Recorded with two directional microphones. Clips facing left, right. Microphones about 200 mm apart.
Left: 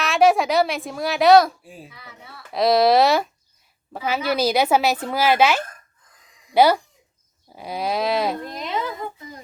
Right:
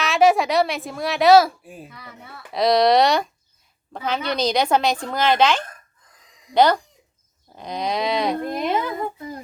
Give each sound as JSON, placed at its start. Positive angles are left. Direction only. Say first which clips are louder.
{"t": 0.0, "sound": "a woman's voice", "louder": "even", "side_deg": 0}
{"t": 8.4, "sound": "speech", "louder": "right 5 dB", "side_deg": -55}